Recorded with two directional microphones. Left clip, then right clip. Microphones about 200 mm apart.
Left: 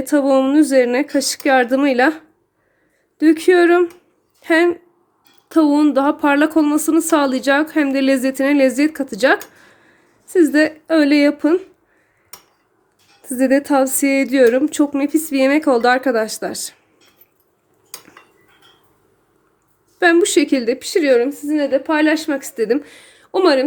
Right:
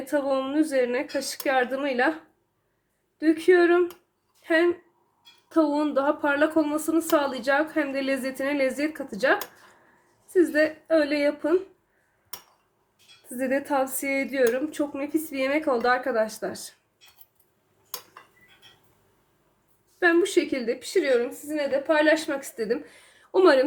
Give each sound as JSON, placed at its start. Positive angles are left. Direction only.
{"t": 0.0, "sound": "speech", "side_deg": 50}
{"t": 3.2, "sound": "speech", "side_deg": 55}
{"t": 13.3, "sound": "speech", "side_deg": 50}
{"t": 20.0, "sound": "speech", "side_deg": 55}